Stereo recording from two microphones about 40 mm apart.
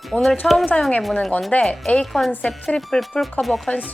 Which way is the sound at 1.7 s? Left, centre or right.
Left.